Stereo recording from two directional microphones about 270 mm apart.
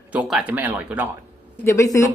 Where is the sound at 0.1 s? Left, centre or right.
Centre.